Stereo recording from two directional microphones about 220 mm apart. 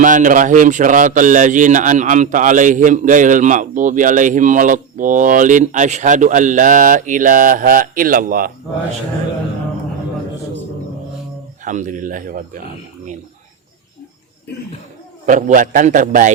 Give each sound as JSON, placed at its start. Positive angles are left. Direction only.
{"t": 0.0, "sound": "speech", "side_deg": -35}
{"t": 11.6, "sound": "speech", "side_deg": -35}
{"t": 15.3, "sound": "speech", "side_deg": -35}